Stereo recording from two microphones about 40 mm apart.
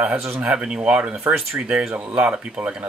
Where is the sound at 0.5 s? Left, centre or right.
Right.